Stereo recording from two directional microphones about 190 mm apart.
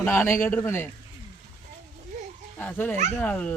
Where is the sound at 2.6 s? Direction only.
10° left (ahead or behind).